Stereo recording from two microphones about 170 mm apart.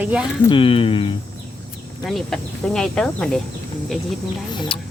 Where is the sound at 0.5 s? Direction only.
30° left (ahead or behind).